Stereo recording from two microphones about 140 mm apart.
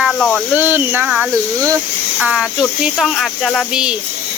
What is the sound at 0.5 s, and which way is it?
Speech, 10° right (ahead or behind).